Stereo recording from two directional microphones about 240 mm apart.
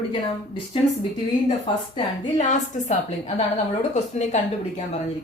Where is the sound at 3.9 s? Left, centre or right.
Left.